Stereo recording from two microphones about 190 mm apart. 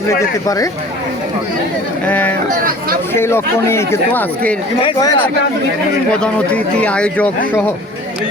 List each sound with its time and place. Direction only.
0.4 s speech: 15° left (ahead or behind)
2.0 s speech: 10° left (ahead or behind)
4.8 s speech: 20° left (ahead or behind)
6.1 s speech: 5° left (ahead or behind)